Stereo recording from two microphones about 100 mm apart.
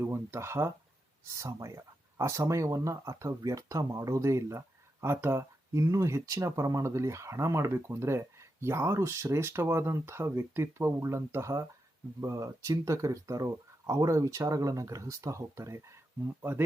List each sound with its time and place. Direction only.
0.0 s speech: 25° right (ahead or behind)